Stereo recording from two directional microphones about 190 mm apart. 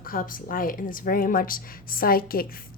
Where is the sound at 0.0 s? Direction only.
50° left (ahead or behind).